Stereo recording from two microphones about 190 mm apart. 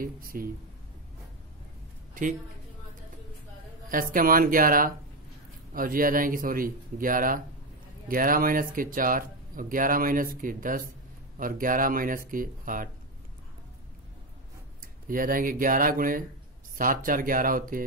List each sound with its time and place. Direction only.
0.0 s speech: 50° right (ahead or behind)
3.9 s speech: 50° right (ahead or behind)
14.8 s speech: 45° right (ahead or behind)